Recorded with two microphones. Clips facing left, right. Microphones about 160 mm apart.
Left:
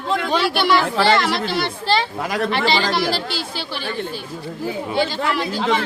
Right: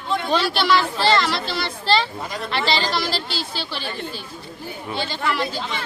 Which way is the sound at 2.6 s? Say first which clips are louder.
Even; 55° left (ahead or behind).